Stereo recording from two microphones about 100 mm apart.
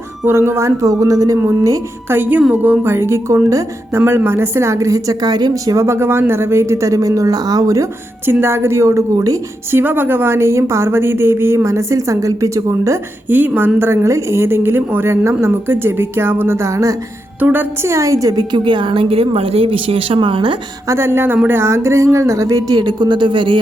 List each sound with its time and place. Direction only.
0.3 s a woman's voice: 25° right (ahead or behind)
2.1 s speech: 20° right (ahead or behind); by 5.7 s 40° right (ahead or behind)
5.7 s speech: 30° right (ahead or behind)
8.3 s speech: 25° right (ahead or behind)
9.7 s speech: 20° right (ahead or behind)
13.2 s speech: 15° right (ahead or behind)
17.4 s a woman's voice: 20° right (ahead or behind); by 20.6 s 55° right (ahead or behind)
20.8 s speech: 25° right (ahead or behind)
22.8 s speech: 50° right (ahead or behind)